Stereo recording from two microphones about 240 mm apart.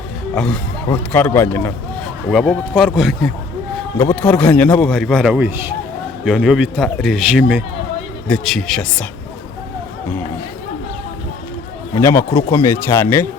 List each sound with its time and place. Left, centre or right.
0.3 s a man's voice: centre
11.9 s speech: centre